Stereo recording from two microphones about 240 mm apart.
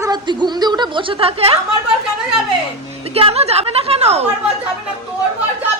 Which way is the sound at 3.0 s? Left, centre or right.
Right.